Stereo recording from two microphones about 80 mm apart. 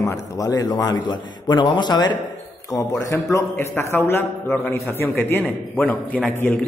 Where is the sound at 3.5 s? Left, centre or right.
Left.